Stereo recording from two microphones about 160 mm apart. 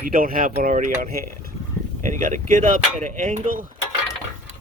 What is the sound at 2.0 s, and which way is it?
Speech, 50° right (ahead or behind).